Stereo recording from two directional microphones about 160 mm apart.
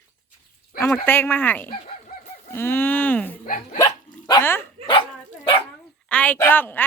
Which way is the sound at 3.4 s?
60° left (ahead or behind).